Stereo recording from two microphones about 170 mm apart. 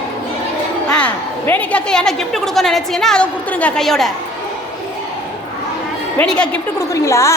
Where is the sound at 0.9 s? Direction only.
10° left (ahead or behind).